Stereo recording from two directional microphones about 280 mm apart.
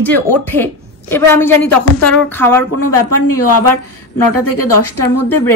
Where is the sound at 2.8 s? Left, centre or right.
Left.